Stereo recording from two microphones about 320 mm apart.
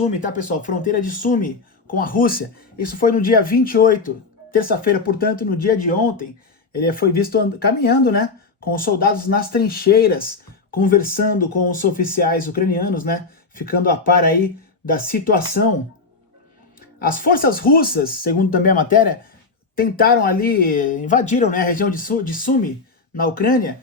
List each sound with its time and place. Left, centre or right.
0.6 s speech: left
17.2 s speech: left